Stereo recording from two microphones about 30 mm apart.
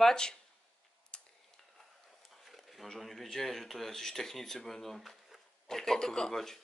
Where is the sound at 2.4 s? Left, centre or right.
Centre.